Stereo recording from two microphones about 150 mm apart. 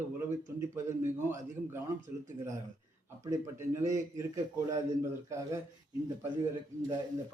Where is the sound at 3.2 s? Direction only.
25° right (ahead or behind).